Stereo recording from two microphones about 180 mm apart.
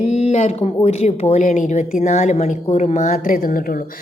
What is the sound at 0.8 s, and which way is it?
A woman's voice, 35° left (ahead or behind).